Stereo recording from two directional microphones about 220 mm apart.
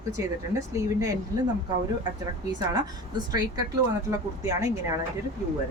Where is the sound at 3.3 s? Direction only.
15° right (ahead or behind).